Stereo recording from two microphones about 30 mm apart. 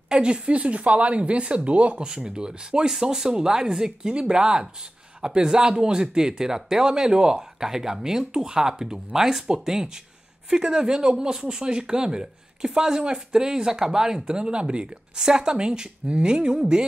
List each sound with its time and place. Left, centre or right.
0.1 s speech: right
0.6 s speech: right
2.0 s speech: right
2.9 s speech: centre; by 15.0 s right
15.1 s speech: right